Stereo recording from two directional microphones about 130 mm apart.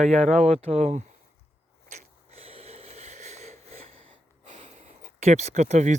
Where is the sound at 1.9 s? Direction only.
60° right (ahead or behind).